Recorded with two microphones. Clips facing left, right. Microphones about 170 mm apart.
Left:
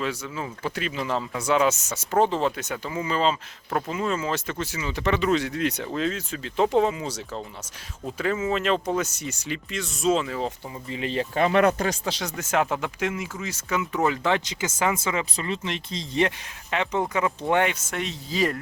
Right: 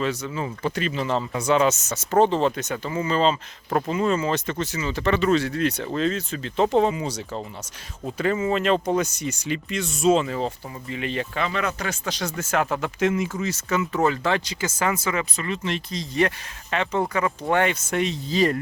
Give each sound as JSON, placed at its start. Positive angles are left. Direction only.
{"t": 0.0, "sound": "speech", "side_deg": 5}
{"t": 10.9, "sound": "speech", "side_deg": 30}
{"t": 11.3, "sound": "speech", "side_deg": 50}
{"t": 11.8, "sound": "speech", "side_deg": 30}
{"t": 12.2, "sound": "speech", "side_deg": 20}
{"t": 17.9, "sound": "speech", "side_deg": 0}